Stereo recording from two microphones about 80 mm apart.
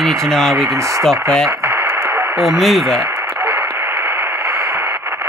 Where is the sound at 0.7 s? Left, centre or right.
Right.